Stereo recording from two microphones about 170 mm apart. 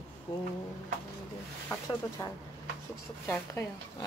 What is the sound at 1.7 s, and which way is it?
Speech, 20° left (ahead or behind).